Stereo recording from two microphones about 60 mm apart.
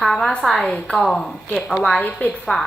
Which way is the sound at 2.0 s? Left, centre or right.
Left.